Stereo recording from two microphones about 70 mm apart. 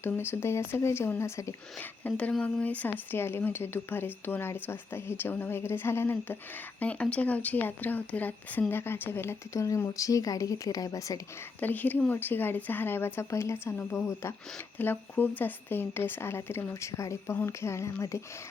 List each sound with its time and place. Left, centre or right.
0.0 s speech: left
1.8 s speech: left
6.7 s speech: centre; by 9.4 s left
9.5 s speech: left
11.6 s speech: left
14.8 s speech: left